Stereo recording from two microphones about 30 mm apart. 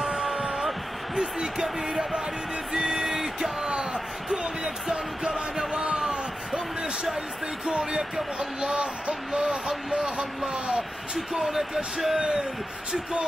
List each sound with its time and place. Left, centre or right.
0.0 s music: right
1.1 s speech: right
2.7 s a sound: right
3.6 s basketball bounce: right
4.6 s music: right
5.9 s basketball bounce: right
7.8 s speech: right
9.7 s speech: centre
10.1 s speech: right
11.5 s speech: centre